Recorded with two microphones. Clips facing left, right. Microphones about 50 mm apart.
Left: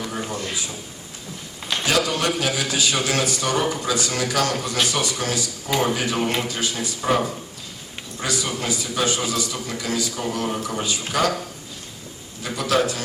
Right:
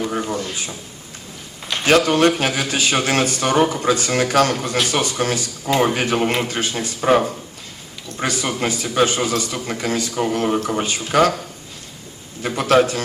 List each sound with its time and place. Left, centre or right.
0.0 s a sound: right
1.8 s a man's voice: right
8.2 s a man's voice: right
12.4 s a man's voice: right